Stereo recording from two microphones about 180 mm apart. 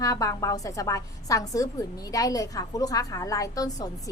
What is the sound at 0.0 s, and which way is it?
A woman's voice, 20° left (ahead or behind).